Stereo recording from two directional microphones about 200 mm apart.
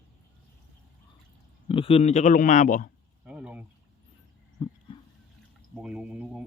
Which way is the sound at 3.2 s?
5° right (ahead or behind).